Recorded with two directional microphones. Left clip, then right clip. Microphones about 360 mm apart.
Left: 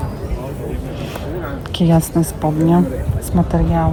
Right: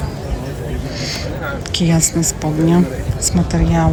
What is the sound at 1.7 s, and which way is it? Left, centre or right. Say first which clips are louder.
Speech: left 2 dB; centre.